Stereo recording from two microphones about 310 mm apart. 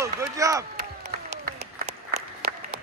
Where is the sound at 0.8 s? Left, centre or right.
Right.